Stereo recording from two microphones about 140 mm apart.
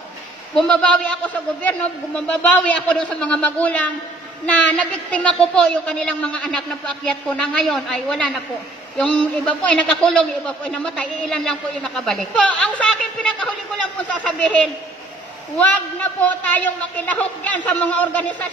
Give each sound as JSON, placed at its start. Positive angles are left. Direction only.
{"t": 0.6, "sound": "a man's voice", "side_deg": 10}